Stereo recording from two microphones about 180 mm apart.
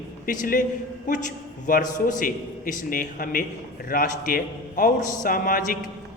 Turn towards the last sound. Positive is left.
turn(degrees=50)  # may be behind; listen again after turning